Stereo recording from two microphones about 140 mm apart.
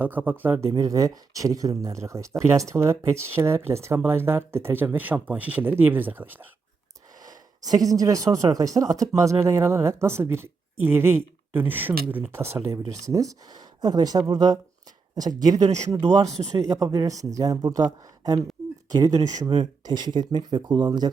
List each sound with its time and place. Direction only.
0.0 s speech: 10° right (ahead or behind)
0.7 s speech: 25° right (ahead or behind)
7.2 s speech: 25° right (ahead or behind)